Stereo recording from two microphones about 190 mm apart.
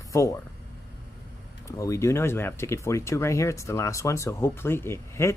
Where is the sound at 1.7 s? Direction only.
15° left (ahead or behind).